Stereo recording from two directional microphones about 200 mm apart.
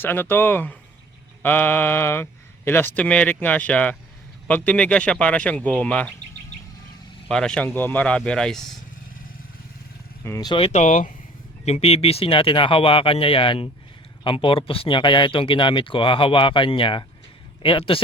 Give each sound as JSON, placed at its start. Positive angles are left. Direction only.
{"t": 0.0, "sound": "speech", "side_deg": 10}
{"t": 7.3, "sound": "speech", "side_deg": 5}
{"t": 10.2, "sound": "speech", "side_deg": 15}